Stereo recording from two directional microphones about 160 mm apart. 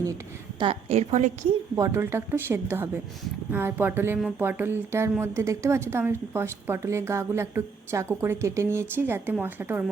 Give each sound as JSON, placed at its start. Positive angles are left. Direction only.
{"t": 0.6, "sound": "a woman's voice", "side_deg": -40}
{"t": 1.7, "sound": "a woman's voice", "side_deg": -15}